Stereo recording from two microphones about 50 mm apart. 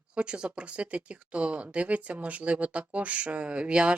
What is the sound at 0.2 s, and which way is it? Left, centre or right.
Speech, centre.